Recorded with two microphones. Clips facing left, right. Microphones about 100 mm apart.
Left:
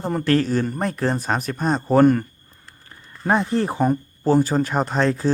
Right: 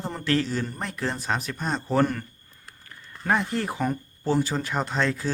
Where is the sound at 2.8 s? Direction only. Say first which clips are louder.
Left 4 dB; 25° left (ahead or behind).